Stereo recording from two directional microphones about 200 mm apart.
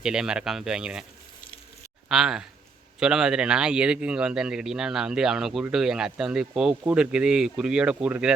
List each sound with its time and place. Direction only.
0.0 s speech: 5° right (ahead or behind)
2.0 s speech: centre (ahead or behind)